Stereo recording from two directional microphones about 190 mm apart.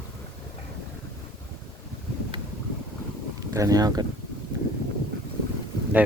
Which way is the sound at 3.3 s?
20° right (ahead or behind).